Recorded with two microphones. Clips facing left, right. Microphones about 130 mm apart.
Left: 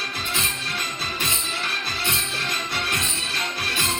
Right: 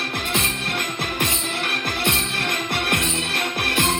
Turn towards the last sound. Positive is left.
turn(degrees=-55)  # may be behind; listen again after turning